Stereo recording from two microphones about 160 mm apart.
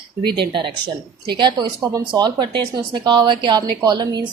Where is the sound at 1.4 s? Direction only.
25° right (ahead or behind).